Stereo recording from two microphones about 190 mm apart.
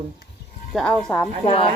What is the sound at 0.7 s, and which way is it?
Speech, centre (ahead or behind).